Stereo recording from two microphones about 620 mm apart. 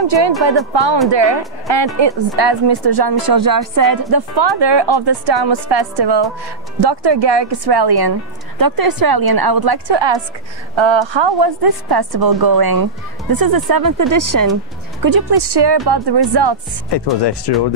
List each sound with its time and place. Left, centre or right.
0.3 s speech: centre
1.1 s a woman's voice: right
16.9 s speech: left